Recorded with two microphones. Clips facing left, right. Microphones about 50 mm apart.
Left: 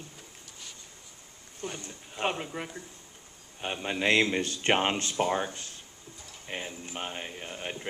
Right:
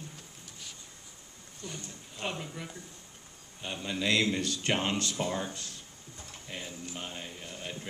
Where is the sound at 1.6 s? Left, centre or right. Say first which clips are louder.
Left 5 dB; left.